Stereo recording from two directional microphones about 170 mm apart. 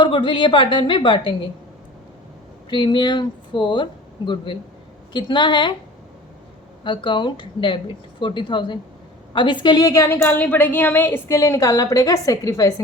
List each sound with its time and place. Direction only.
0.0 s a woman's voice: 30° left (ahead or behind)
2.6 s a woman's voice: 30° left (ahead or behind)
5.1 s a woman's voice: 30° left (ahead or behind)
6.8 s a woman's voice: 30° left (ahead or behind)